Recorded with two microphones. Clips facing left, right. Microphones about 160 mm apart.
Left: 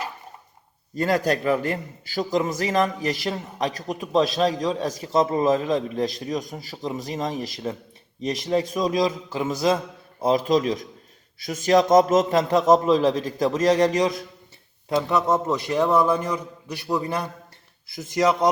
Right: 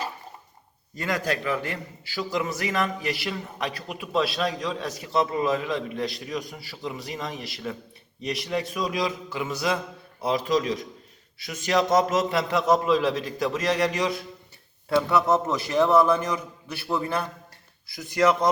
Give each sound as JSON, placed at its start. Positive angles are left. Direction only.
{"t": 0.9, "sound": "a man's voice", "side_deg": 40}
{"t": 10.2, "sound": "a man's voice", "side_deg": 45}
{"t": 14.8, "sound": "speech", "side_deg": 20}